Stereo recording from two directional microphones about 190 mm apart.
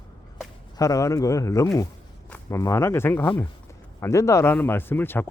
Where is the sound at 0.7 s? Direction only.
15° left (ahead or behind).